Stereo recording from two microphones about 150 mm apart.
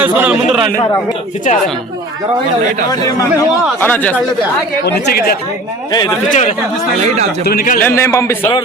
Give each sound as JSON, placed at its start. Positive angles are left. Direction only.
{"t": 0.0, "sound": "a man's voice", "side_deg": -10}
{"t": 1.5, "sound": "speech", "side_deg": 55}
{"t": 2.9, "sound": "speech", "side_deg": 20}
{"t": 4.9, "sound": "speech", "side_deg": 90}
{"t": 5.9, "sound": "a man's voice", "side_deg": 30}
{"t": 6.3, "sound": "speech", "side_deg": 55}
{"t": 7.4, "sound": "a man's voice", "side_deg": 80}
{"t": 7.8, "sound": "speech", "side_deg": 15}